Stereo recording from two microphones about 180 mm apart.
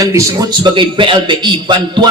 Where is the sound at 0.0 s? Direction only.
20° right (ahead or behind).